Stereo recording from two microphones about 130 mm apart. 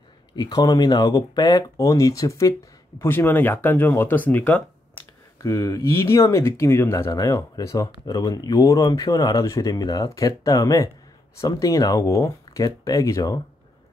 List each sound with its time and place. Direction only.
0.4 s speech: 35° left (ahead or behind); by 4.6 s 10° left (ahead or behind)
5.4 s speech: 25° left (ahead or behind)